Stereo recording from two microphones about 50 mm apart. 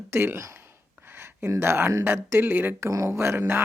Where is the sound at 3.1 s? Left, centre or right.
Right.